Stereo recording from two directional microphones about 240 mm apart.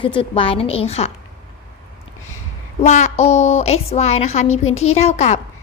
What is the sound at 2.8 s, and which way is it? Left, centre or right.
A woman's voice, left.